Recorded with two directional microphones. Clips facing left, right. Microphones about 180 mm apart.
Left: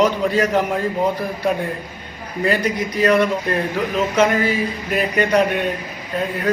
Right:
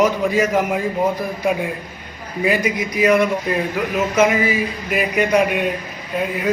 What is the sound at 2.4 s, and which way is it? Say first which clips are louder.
A man's voice: even; 10° right (ahead or behind).